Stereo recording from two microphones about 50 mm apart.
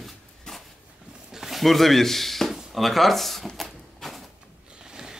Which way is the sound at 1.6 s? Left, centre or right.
Centre.